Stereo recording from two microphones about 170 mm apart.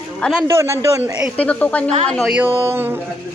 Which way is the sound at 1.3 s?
10° left (ahead or behind).